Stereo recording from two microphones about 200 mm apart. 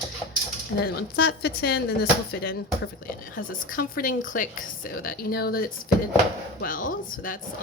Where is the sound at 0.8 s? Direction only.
55° left (ahead or behind).